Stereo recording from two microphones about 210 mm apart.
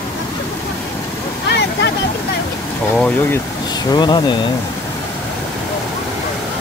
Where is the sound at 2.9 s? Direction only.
5° left (ahead or behind).